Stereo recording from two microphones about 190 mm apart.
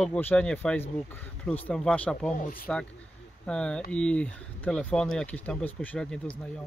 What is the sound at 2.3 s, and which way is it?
Speech, 45° left (ahead or behind).